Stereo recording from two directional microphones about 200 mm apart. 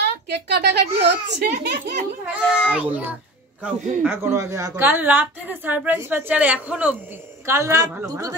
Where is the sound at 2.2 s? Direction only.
5° right (ahead or behind).